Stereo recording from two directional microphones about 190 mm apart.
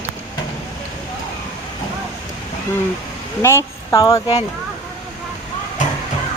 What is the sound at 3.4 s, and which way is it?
Speech, 15° left (ahead or behind).